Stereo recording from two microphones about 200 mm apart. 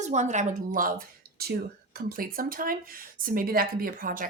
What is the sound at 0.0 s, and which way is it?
Speech, 35° right (ahead or behind).